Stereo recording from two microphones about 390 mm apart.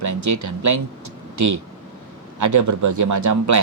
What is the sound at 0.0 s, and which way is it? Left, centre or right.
Speech, right.